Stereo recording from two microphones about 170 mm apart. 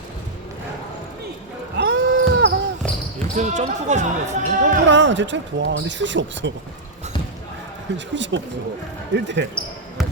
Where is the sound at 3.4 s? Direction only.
45° right (ahead or behind).